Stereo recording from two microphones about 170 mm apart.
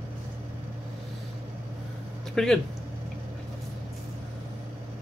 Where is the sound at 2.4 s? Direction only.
5° left (ahead or behind).